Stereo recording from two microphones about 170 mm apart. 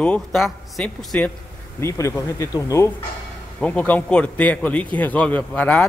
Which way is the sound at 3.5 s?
10° left (ahead or behind).